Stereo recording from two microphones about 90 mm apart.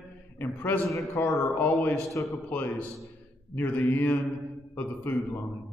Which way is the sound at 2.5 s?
20° left (ahead or behind).